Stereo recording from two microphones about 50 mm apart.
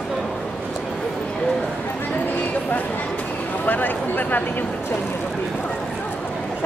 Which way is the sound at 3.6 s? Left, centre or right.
Left.